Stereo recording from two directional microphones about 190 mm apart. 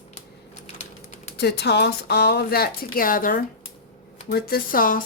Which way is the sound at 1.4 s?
60° left (ahead or behind).